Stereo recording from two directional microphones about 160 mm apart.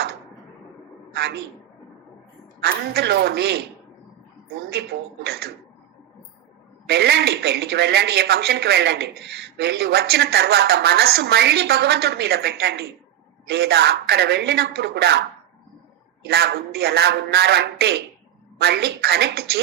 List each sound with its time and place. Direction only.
1.1 s a woman's voice: 90° right
2.6 s speech: 90° right
4.7 s speech: 90° right
6.8 s speech: 90° right
16.2 s speech: 90° right